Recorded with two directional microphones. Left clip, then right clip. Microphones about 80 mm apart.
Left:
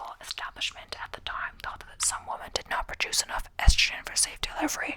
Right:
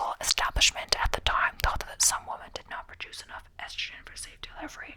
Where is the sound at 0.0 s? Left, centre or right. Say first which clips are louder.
Right 9 dB; right.